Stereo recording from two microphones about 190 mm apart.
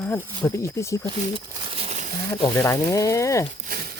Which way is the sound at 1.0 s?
25° right (ahead or behind).